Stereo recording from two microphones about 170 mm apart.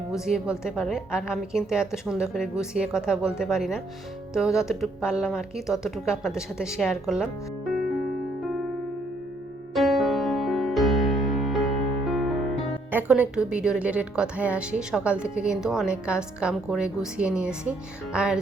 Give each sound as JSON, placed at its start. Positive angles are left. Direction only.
{"t": 0.1, "sound": "a woman's voice", "side_deg": -5}
{"t": 9.7, "sound": "music", "side_deg": 0}